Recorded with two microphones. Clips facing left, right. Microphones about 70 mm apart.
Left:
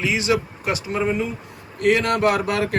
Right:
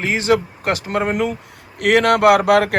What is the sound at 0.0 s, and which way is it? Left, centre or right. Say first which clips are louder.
Speech: right 4 dB; right.